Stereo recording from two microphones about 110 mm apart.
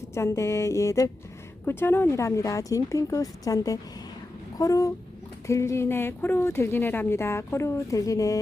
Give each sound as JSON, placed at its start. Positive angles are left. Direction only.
{"t": 0.1, "sound": "speech", "side_deg": 25}